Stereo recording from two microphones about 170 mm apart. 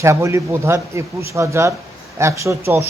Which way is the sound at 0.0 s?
15° right (ahead or behind).